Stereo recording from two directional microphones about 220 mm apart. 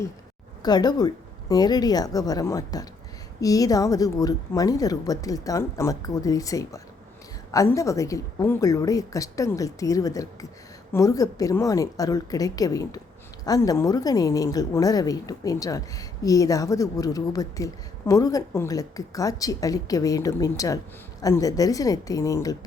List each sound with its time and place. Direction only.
0.6 s a woman's voice: 20° left (ahead or behind)